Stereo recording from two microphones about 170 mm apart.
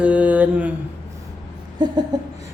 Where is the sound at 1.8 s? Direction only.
25° right (ahead or behind).